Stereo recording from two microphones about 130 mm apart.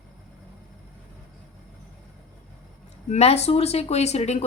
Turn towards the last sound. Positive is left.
turn(degrees=55)  # may be behind; listen again after turning